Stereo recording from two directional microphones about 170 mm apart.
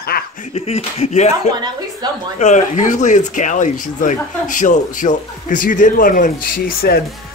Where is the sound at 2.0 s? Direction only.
25° right (ahead or behind).